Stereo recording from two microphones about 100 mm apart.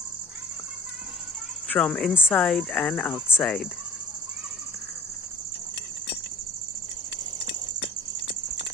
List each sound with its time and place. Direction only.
1.7 s speech: 5° left (ahead or behind)